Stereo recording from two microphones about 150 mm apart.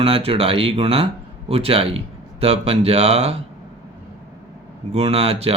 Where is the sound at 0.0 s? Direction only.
40° right (ahead or behind).